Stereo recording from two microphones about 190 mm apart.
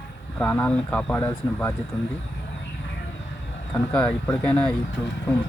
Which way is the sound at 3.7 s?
5° left (ahead or behind).